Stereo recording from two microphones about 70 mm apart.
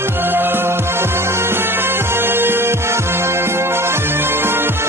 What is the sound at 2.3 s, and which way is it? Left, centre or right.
Music, right.